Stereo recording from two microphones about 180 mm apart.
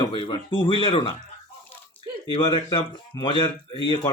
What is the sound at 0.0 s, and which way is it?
Speech, 30° left (ahead or behind).